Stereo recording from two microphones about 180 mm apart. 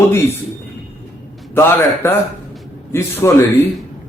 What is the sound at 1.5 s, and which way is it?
A man's voice, 10° left (ahead or behind).